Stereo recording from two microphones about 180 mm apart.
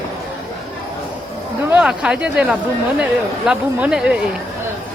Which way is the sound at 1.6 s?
5° right (ahead or behind).